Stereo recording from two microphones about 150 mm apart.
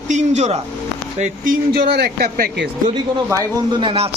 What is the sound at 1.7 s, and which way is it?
Speech, 90° right.